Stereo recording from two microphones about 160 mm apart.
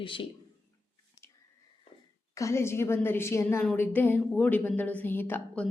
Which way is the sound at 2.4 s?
15° left (ahead or behind).